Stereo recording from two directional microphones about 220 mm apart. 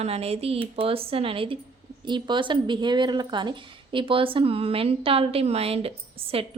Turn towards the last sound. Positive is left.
turn(degrees=-25)  # may be behind; listen again after turning